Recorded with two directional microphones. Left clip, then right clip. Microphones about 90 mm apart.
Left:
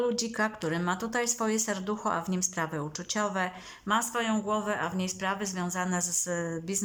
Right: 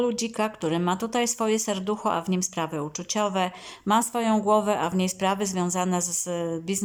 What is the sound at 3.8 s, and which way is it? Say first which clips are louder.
A woman's voice: right 5 dB; 50° right (ahead or behind).